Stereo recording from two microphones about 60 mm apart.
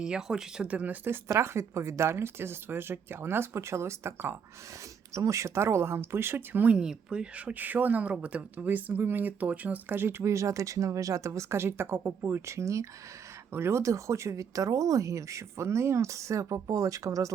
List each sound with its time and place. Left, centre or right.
0.0 s speech: centre
0.7 s speech: right
1.3 s speech: right
5.1 s speech: right
6.7 s speech: centre; by 12.4 s right
12.5 s speech: right
13.5 s speech: right